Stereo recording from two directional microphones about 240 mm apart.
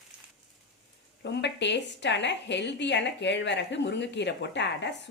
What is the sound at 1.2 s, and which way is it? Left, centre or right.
A woman's voice, left.